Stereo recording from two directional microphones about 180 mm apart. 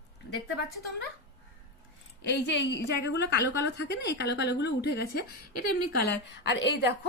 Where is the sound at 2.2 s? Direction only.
75° left (ahead or behind).